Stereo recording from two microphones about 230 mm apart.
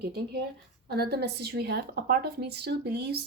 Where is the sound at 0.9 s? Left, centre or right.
Right.